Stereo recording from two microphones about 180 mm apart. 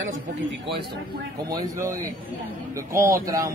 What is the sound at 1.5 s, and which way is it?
A man's voice, 20° right (ahead or behind).